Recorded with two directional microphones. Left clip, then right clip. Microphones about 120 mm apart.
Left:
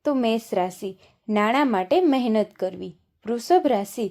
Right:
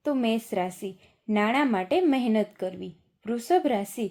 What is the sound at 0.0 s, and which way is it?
A woman's voice, 25° left (ahead or behind).